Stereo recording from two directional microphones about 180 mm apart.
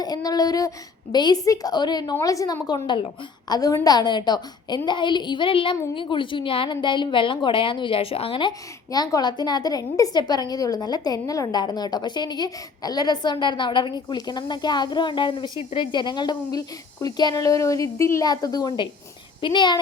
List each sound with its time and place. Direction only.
0.0 s a woman's voice: 20° left (ahead or behind)